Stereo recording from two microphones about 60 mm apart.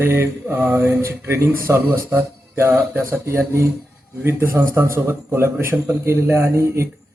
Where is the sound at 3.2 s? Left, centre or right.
Right.